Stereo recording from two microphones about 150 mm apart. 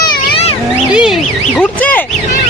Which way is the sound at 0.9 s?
5° right (ahead or behind).